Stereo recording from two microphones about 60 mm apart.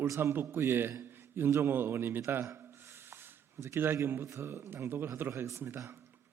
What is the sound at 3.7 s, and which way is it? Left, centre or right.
A man's voice, right.